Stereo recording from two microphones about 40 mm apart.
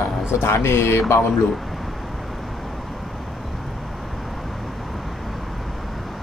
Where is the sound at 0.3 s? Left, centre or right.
Left.